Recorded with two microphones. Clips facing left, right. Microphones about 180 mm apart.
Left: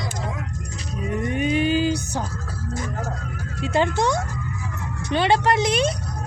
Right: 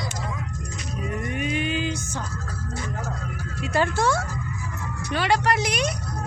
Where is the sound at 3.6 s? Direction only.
20° left (ahead or behind).